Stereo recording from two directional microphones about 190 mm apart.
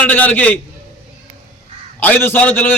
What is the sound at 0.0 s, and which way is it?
Speech, 10° left (ahead or behind).